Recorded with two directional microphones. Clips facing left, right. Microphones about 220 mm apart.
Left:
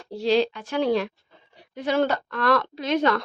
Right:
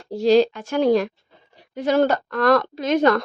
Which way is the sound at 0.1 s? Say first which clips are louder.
Right 6 dB; 45° right (ahead or behind).